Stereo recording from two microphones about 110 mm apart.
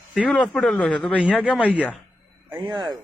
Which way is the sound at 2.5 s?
45° right (ahead or behind).